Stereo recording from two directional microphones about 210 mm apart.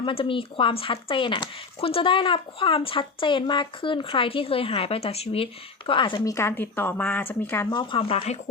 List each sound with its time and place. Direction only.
0.0 s speech: 25° left (ahead or behind)